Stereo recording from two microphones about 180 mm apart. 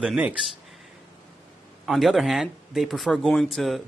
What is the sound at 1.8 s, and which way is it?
A man's voice, centre (ahead or behind).